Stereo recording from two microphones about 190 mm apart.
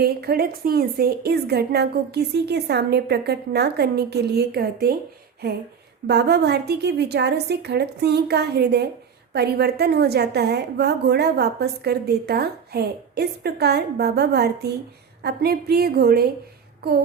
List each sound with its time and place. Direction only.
0.0 s a woman's voice: 55° right (ahead or behind)